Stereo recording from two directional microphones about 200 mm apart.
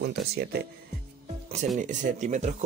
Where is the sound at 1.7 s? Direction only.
40° right (ahead or behind).